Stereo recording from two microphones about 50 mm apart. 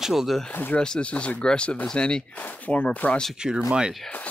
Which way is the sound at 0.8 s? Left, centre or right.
Left.